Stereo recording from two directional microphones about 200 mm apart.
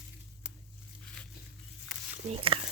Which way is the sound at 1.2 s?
5° left (ahead or behind).